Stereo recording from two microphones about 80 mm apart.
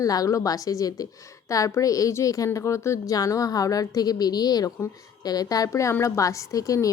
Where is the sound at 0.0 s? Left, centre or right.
Left.